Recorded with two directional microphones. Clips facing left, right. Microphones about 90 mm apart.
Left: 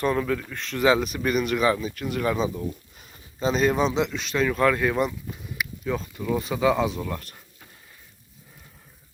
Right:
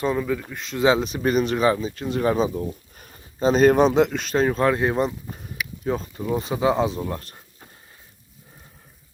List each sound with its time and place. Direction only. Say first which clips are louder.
0.1 s speech: right 1 dB; 10° right (ahead or behind); by 5.1 s 30° right (ahead or behind)
5.3 s speech: even; 40° right (ahead or behind)